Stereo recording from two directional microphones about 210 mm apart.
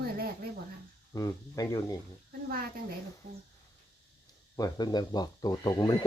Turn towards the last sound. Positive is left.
turn(degrees=20)  # may be behind; listen again after turning